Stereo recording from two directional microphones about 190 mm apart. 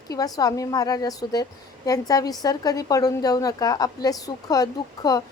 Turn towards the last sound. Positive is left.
turn(degrees=20)  # may be behind; listen again after turning